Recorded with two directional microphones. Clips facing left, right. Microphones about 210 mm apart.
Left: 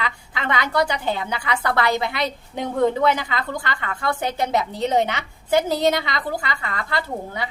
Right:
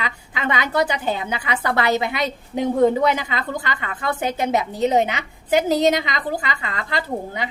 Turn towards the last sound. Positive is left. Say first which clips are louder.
# right 1 dB
turn(degrees=-20)  # may be behind; listen again after turning